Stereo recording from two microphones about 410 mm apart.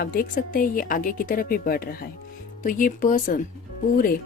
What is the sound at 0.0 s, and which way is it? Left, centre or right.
Speech, left.